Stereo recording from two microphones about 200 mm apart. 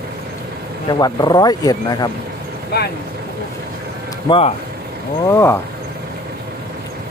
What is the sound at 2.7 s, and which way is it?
Speech, 50° left (ahead or behind).